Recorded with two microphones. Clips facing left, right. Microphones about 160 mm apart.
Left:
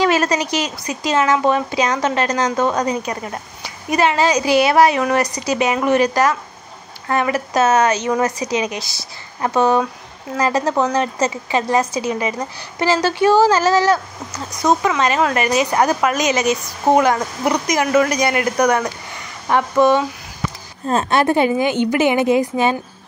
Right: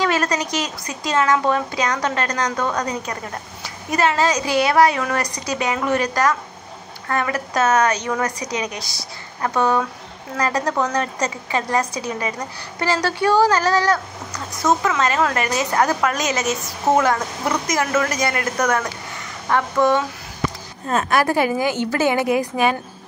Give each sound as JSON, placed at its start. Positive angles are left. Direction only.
{"t": 0.0, "sound": "a woman's voice", "side_deg": 20}
{"t": 5.2, "sound": "speech", "side_deg": 5}
{"t": 5.7, "sound": "a woman's voice", "side_deg": 15}
{"t": 9.4, "sound": "a woman's voice", "side_deg": 25}